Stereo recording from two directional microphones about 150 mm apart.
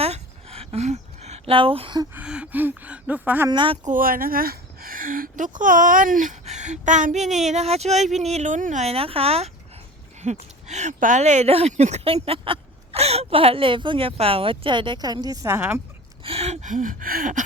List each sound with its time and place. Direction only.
0.0 s a sound: 40° right (ahead or behind)
2.1 s speech: 5° right (ahead or behind)
3.5 s speech: 30° right (ahead or behind)
3.8 s speech: 65° right (ahead or behind); by 9.5 s 40° right (ahead or behind)
10.2 s a sound: 45° right (ahead or behind)
10.7 s speech: 50° right (ahead or behind); by 15.8 s 15° right (ahead or behind)
16.2 s speech: 45° right (ahead or behind); by 17.4 s 65° right (ahead or behind)